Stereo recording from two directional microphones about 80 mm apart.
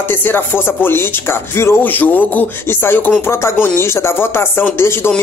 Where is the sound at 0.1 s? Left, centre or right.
Left.